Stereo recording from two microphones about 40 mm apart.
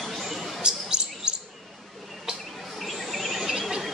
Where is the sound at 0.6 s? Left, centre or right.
Right.